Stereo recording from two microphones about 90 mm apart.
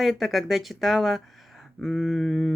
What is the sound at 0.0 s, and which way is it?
Speech, centre (ahead or behind).